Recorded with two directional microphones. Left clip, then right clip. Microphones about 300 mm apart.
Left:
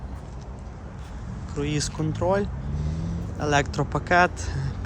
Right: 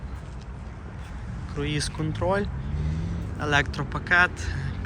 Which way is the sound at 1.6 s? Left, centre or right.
Centre.